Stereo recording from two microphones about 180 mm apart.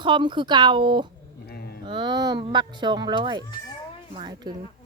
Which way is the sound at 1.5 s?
60° left (ahead or behind).